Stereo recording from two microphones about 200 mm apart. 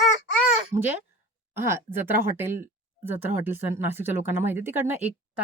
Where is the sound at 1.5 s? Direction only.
10° right (ahead or behind).